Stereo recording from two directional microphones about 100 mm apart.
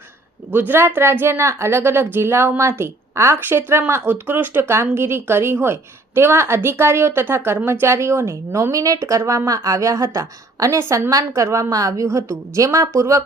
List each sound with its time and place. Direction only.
0.5 s a woman's voice: 20° right (ahead or behind)